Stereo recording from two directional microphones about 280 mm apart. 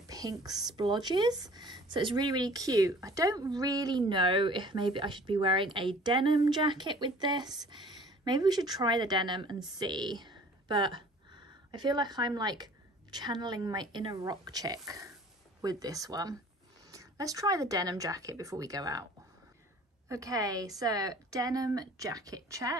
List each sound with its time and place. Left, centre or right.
0.0 s speech: centre
20.1 s speech: centre